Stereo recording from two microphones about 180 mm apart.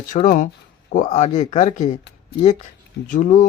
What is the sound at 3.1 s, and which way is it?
Speech, 45° left (ahead or behind).